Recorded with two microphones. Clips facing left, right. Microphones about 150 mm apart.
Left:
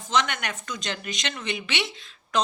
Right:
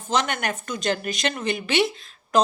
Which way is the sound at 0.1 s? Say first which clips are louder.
Right 2 dB; 45° right (ahead or behind).